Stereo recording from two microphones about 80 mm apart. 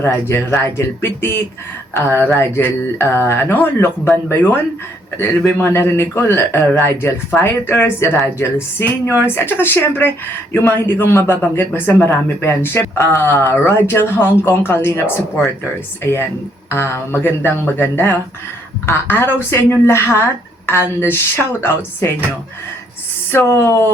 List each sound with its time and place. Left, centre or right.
0.0 s speech: left
16.6 s speech: left
23.3 s speech: left